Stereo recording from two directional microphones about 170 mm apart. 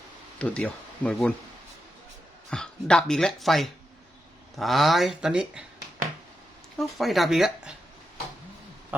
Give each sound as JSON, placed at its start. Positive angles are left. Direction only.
{"t": 0.3, "sound": "speech", "side_deg": 5}
{"t": 2.5, "sound": "speech", "side_deg": 5}
{"t": 6.7, "sound": "speech", "side_deg": 0}
{"t": 8.9, "sound": "a sound", "side_deg": -10}